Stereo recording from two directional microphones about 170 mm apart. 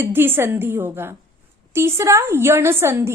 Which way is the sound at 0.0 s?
15° right (ahead or behind).